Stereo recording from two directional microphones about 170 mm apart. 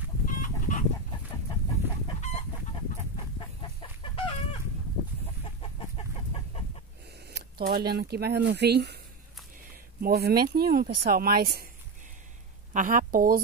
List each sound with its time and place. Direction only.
0.2 s chicken: 50° left (ahead or behind)
3.3 s chicken: 30° left (ahead or behind)
5.6 s chicken: 35° left (ahead or behind)
7.2 s speech: 70° right (ahead or behind)
9.7 s speech: 65° right (ahead or behind)
12.7 s speech: 50° right (ahead or behind)